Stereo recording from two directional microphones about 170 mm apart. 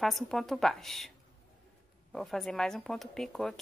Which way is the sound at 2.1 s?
Centre (ahead or behind).